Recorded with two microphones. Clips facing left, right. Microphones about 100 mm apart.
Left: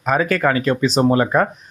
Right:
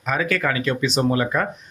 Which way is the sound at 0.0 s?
40° left (ahead or behind).